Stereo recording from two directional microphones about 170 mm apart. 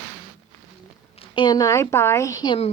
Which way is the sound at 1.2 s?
25° left (ahead or behind).